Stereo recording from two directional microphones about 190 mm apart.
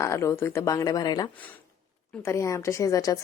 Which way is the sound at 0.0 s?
15° left (ahead or behind).